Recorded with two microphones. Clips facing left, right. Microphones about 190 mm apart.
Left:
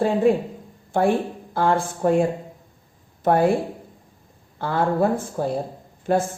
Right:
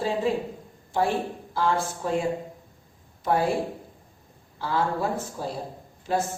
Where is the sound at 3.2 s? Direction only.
55° left (ahead or behind).